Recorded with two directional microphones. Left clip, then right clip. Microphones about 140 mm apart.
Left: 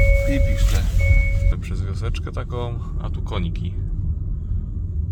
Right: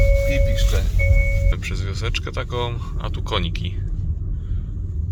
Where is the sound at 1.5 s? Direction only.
25° left (ahead or behind).